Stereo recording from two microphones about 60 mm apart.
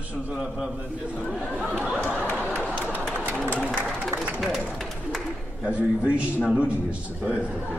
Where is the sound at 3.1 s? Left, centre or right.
Right.